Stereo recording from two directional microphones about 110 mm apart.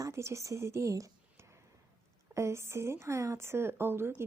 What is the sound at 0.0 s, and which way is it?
A woman's voice, 25° right (ahead or behind).